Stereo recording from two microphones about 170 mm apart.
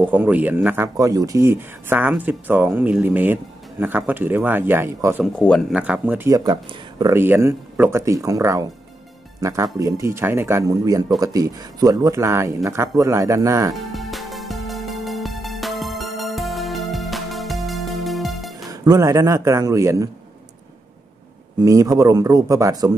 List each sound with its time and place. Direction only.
0.0 s speech: 10° right (ahead or behind)
5.2 s speech: 5° left (ahead or behind)
5.7 s speech: 5° right (ahead or behind)
13.7 s music: centre (ahead or behind)
18.7 s speech: 20° right (ahead or behind)
21.5 s speech: 20° right (ahead or behind)